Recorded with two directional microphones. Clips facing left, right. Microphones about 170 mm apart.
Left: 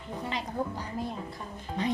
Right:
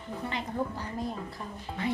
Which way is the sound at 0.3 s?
15° left (ahead or behind).